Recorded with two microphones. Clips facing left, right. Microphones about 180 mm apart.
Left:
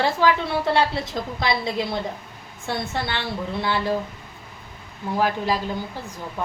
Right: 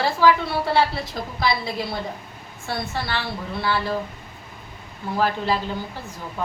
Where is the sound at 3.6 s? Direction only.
20° left (ahead or behind).